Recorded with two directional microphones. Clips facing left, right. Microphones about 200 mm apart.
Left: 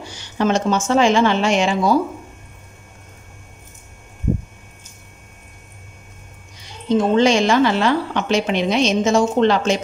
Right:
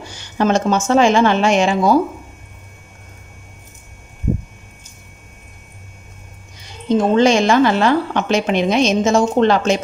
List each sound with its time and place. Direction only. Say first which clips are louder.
0.4 s a woman's voice: right 2 dB; 45° right (ahead or behind)
7.2 s a woman's voice: right 3 dB; 50° right (ahead or behind)